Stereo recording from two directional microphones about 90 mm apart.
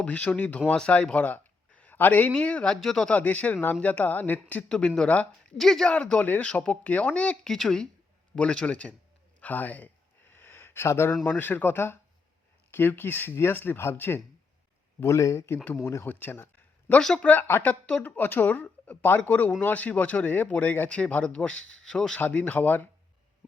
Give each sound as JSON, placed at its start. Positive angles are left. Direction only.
{"t": 0.0, "sound": "a man's voice", "side_deg": 15}
{"t": 3.1, "sound": "speech", "side_deg": 20}
{"t": 9.4, "sound": "a sound", "side_deg": 20}
{"t": 11.3, "sound": "speech", "side_deg": 20}
{"t": 22.2, "sound": "speech", "side_deg": 20}